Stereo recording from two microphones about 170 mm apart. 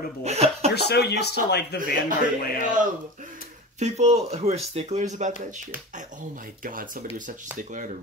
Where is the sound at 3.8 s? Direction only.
40° right (ahead or behind).